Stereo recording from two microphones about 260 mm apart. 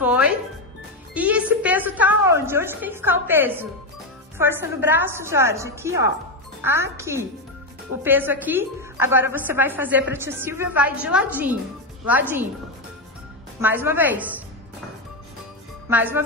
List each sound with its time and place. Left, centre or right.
0.0 s music: centre
1.1 s a sound: centre
4.4 s a woman's voice: centre
13.6 s a woman's voice: centre
15.9 s a woman's voice: centre